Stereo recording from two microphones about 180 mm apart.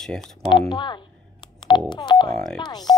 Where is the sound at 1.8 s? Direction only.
25° left (ahead or behind).